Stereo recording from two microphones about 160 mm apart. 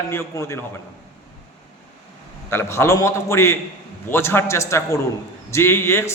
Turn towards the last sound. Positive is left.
turn(degrees=15)  # may be behind; listen again after turning